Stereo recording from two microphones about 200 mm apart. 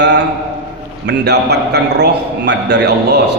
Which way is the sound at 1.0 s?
60° right (ahead or behind).